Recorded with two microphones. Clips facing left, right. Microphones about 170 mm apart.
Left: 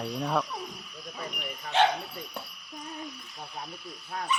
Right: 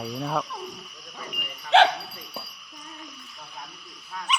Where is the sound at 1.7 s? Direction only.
90° right.